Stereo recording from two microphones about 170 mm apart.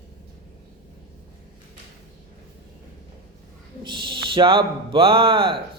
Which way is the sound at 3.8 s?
30° right (ahead or behind).